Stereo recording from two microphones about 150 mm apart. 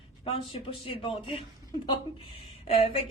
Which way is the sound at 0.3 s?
40° left (ahead or behind).